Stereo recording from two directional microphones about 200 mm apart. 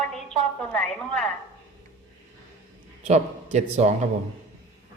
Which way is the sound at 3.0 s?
35° right (ahead or behind).